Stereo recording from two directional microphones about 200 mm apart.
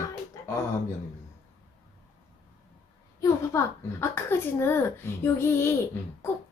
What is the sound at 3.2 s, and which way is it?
A child's voice, 15° left (ahead or behind).